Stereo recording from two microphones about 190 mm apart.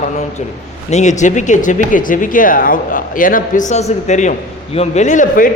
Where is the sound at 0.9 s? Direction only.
40° left (ahead or behind).